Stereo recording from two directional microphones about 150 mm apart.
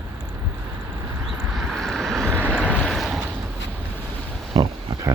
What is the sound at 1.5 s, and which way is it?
Vehicle, centre (ahead or behind).